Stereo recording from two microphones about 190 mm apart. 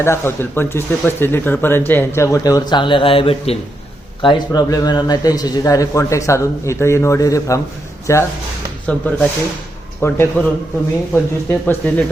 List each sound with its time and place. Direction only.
0.0 s speech: 15° left (ahead or behind)